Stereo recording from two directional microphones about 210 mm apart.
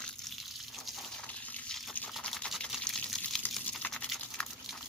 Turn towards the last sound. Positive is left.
turn(degrees=0)  # may be behind; listen again after turning